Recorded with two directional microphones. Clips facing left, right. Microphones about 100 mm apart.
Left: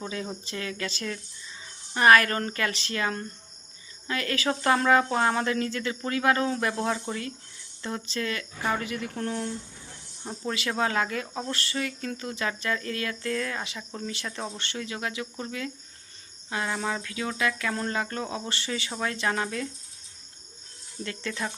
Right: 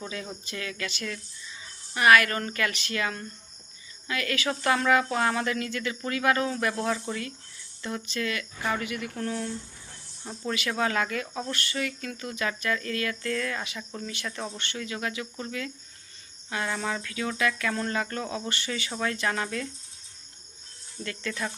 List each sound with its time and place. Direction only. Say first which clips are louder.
0.0 s speech: left 3 dB; 25° left (ahead or behind)
21.0 s speech: even; 25° left (ahead or behind)